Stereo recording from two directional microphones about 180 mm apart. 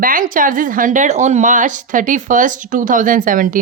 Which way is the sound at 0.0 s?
50° right (ahead or behind).